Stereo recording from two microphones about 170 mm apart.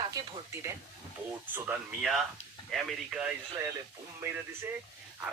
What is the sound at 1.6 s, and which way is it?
Speech, 5° right (ahead or behind).